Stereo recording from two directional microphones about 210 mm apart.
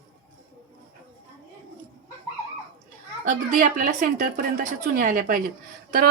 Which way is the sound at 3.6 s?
40° right (ahead or behind).